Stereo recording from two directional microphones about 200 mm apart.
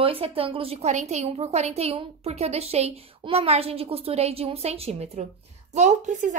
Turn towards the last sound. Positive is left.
turn(degrees=-40)  # may be behind; listen again after turning